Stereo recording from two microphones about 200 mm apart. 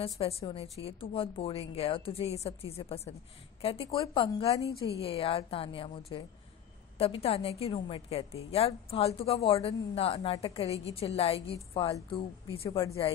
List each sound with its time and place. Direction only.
0.0 s a woman's voice: 30° left (ahead or behind)
12.6 s a woman's voice: 15° left (ahead or behind)